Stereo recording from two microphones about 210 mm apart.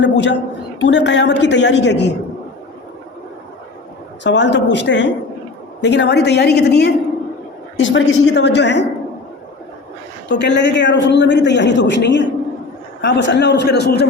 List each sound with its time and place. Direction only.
0.0 s a woman's voice: 55° left (ahead or behind)
4.2 s a man's voice: 55° left (ahead or behind)
7.8 s a man's voice: 65° left (ahead or behind)
10.2 s a man's voice: 55° left (ahead or behind)